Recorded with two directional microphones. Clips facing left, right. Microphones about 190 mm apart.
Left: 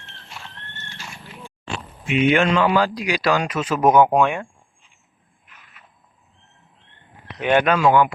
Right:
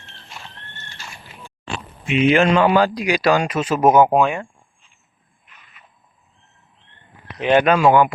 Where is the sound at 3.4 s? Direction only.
30° right (ahead or behind).